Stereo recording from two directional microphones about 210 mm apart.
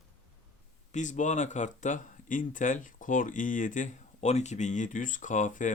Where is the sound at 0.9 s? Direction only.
35° left (ahead or behind).